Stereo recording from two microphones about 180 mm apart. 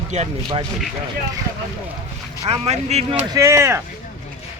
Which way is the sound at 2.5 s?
35° right (ahead or behind).